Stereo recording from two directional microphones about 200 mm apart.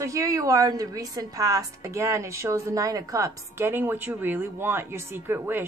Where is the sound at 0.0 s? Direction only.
15° right (ahead or behind).